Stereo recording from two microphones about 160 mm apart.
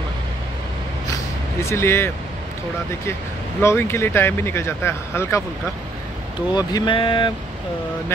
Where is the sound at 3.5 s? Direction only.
15° left (ahead or behind).